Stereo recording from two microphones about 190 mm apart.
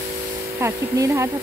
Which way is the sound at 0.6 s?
15° right (ahead or behind).